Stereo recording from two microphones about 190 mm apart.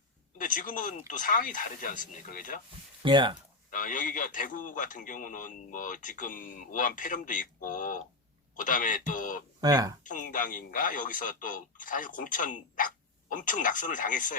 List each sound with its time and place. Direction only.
0.3 s speech: 45° left (ahead or behind)
3.0 s speech: 25° right (ahead or behind)
3.7 s speech: 45° left (ahead or behind)
9.6 s speech: 20° right (ahead or behind)
10.0 s speech: 45° left (ahead or behind)